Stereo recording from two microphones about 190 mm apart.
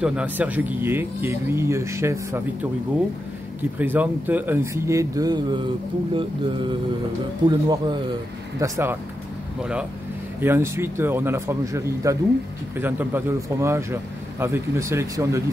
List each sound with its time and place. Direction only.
0.0 s speech: 5° right (ahead or behind)
3.7 s speech: 10° right (ahead or behind)